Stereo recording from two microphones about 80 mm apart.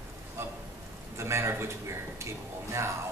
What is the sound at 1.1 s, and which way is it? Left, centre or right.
Speech, right.